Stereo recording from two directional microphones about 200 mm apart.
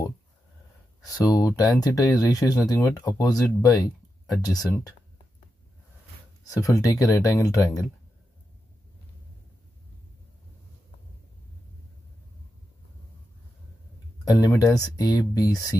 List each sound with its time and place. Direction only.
1.0 s speech: 20° left (ahead or behind)
6.5 s speech: 15° left (ahead or behind)
14.2 s speech: 15° left (ahead or behind)